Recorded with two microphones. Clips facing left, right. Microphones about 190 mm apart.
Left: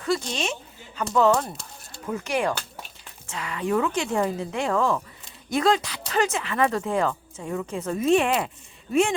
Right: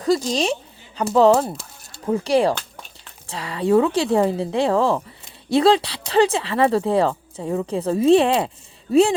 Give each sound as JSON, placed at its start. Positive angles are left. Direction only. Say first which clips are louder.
{"t": 0.0, "sound": "speech", "louder": "right 7 dB", "side_deg": -35}